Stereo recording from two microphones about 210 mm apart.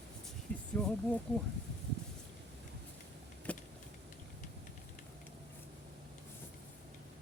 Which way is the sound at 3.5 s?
5° left (ahead or behind).